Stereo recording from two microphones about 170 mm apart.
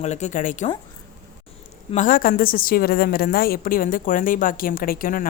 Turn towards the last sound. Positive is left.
turn(degrees=55)  # may be behind; listen again after turning